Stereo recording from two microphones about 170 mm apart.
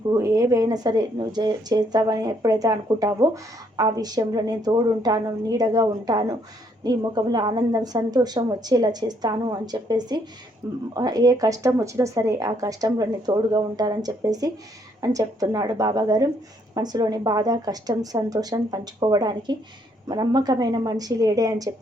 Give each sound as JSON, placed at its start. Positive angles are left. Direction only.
{"t": 0.1, "sound": "speech", "side_deg": -20}